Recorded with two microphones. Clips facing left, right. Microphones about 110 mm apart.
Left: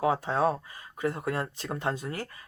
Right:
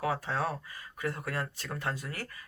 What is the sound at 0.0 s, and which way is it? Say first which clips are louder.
Speech: left 6 dB; 20° left (ahead or behind).